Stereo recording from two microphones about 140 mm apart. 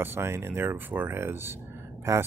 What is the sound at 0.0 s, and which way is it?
Speech, 15° right (ahead or behind).